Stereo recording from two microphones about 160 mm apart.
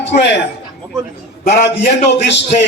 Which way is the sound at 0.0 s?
90° left.